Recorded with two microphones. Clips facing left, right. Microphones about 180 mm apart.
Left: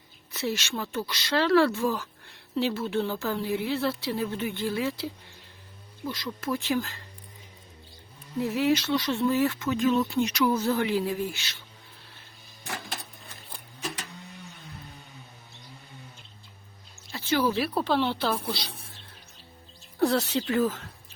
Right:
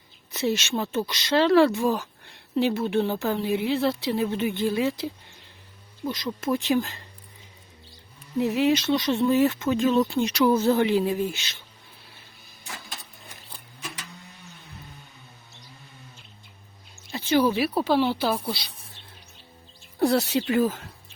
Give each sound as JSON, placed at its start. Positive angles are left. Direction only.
{"t": 0.3, "sound": "speech", "side_deg": -20}
{"t": 6.1, "sound": "speech", "side_deg": -20}
{"t": 8.4, "sound": "speech", "side_deg": -20}
{"t": 17.1, "sound": "a sound", "side_deg": -20}
{"t": 17.6, "sound": "speech", "side_deg": -5}
{"t": 20.0, "sound": "speech", "side_deg": -10}